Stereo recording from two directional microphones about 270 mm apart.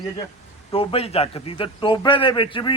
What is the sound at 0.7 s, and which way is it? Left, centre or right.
A man's voice, left.